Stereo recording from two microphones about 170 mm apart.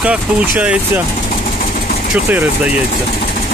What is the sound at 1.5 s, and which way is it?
Vehicle, 60° left (ahead or behind).